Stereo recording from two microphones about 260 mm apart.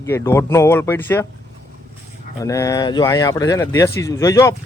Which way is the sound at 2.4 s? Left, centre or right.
Centre.